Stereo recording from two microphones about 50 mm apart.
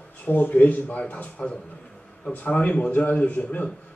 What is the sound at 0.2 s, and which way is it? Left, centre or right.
A man's voice, left.